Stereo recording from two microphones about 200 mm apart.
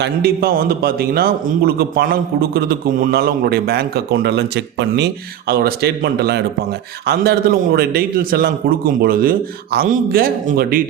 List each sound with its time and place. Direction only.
0.0 s a man's voice: 50° right (ahead or behind)